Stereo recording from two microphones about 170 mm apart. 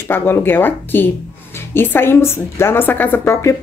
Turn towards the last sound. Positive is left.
turn(degrees=15)  # may be behind; listen again after turning